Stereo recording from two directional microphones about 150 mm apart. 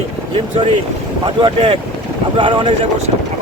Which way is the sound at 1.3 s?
35° right (ahead or behind).